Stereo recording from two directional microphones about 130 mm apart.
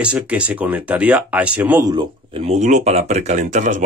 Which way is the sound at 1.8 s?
35° right (ahead or behind).